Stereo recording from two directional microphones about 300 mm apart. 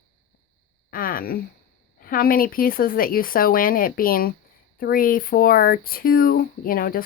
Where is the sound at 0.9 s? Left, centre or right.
Left.